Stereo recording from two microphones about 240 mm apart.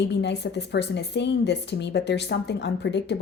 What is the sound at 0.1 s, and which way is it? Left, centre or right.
A woman's voice, left.